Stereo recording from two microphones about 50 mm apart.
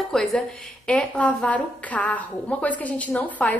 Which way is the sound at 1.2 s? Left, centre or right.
Left.